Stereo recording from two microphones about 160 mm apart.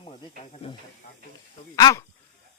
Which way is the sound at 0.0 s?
30° left (ahead or behind).